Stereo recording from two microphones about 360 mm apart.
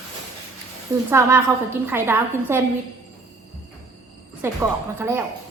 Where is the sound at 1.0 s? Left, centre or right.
Centre.